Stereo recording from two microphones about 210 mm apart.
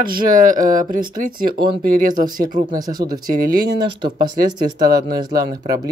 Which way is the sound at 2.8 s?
20° right (ahead or behind).